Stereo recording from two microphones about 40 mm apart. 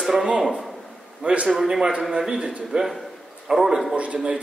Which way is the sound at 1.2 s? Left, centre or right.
Right.